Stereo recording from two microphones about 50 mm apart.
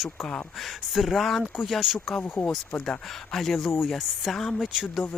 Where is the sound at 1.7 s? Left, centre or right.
Centre.